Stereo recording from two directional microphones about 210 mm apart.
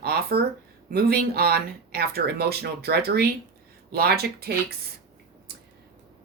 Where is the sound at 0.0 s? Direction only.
50° right (ahead or behind).